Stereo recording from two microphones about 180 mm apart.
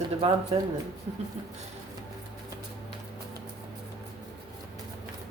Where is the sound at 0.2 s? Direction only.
35° right (ahead or behind).